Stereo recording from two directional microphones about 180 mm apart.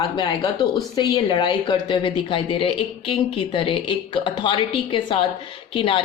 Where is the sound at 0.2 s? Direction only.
25° left (ahead or behind).